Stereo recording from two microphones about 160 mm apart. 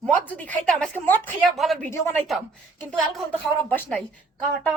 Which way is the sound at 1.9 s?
15° left (ahead or behind).